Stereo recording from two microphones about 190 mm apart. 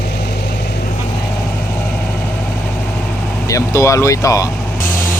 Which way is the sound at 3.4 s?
15° left (ahead or behind).